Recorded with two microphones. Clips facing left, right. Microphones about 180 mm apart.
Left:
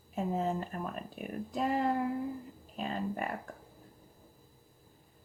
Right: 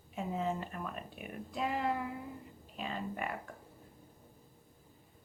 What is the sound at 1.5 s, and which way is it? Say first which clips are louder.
Speech: left 4 dB; 40° left (ahead or behind).